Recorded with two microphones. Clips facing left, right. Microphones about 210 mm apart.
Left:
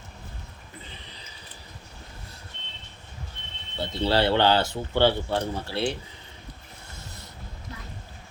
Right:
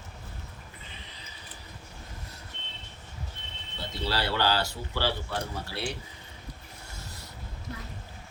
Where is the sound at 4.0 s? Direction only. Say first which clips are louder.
Left 7 dB; 25° left (ahead or behind).